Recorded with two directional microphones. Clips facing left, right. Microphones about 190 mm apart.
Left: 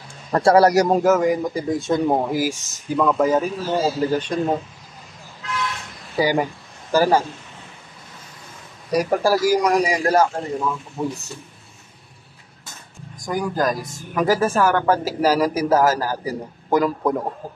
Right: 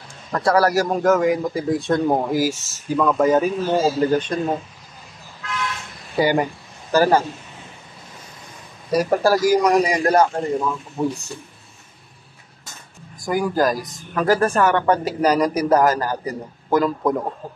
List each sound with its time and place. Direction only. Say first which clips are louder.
0.3 s speech: left 3 dB; 30° left (ahead or behind)
1.0 s speech: even; centre (ahead or behind)
4.0 s a man's voice: right 2 dB; 10° left (ahead or behind)
6.1 s a man's voice: right 1 dB; centre (ahead or behind)
8.9 s a man's voice: right 1 dB; 10° left (ahead or behind)
13.2 s speech: right 3 dB; 5° right (ahead or behind)